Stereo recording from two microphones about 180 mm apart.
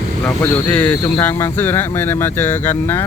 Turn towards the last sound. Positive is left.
turn(degrees=10)  # may be behind; listen again after turning